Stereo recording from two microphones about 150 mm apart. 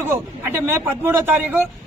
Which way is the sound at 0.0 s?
15° right (ahead or behind).